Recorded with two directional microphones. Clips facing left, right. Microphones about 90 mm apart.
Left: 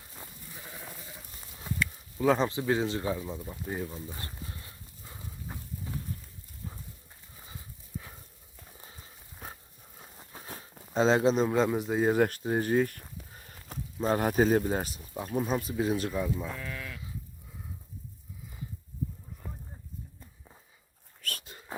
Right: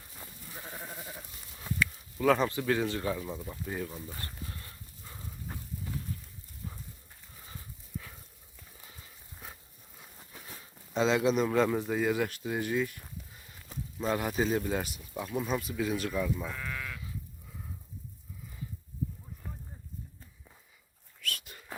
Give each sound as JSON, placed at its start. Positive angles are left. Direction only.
{"t": 2.1, "sound": "speech", "side_deg": 20}
{"t": 4.0, "sound": "a sound", "side_deg": 20}
{"t": 8.8, "sound": "horse", "side_deg": 30}
{"t": 10.3, "sound": "a sound", "side_deg": 35}
{"t": 12.0, "sound": "speech", "side_deg": 45}
{"t": 13.3, "sound": "a sound", "side_deg": 50}
{"t": 14.0, "sound": "speech", "side_deg": 40}
{"t": 21.2, "sound": "dog", "side_deg": 40}
{"t": 21.5, "sound": "dog", "side_deg": 25}